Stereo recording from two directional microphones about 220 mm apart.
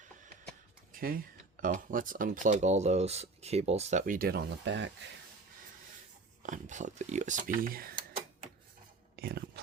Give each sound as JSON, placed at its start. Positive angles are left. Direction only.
{"t": 0.9, "sound": "speech", "side_deg": -40}
{"t": 6.4, "sound": "speech", "side_deg": -35}
{"t": 9.1, "sound": "whispering", "side_deg": -45}